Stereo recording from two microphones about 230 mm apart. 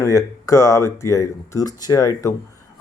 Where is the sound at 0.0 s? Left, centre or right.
Centre.